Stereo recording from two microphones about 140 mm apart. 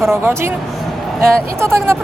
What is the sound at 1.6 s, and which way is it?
Speech, 15° right (ahead or behind).